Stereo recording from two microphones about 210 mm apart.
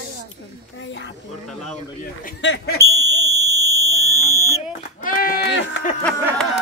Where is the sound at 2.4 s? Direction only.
55° left (ahead or behind).